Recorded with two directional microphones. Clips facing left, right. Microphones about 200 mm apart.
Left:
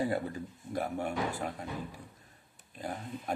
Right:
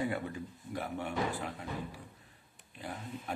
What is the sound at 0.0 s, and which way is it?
Speech, 40° left (ahead or behind).